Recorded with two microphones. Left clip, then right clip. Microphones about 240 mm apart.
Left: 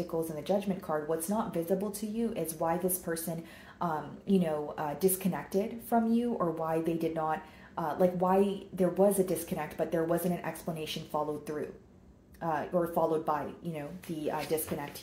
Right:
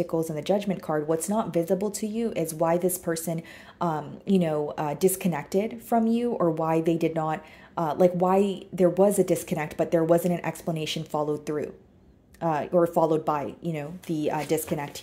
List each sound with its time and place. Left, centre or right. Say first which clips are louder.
0.0 s a woman's voice: right 7 dB; right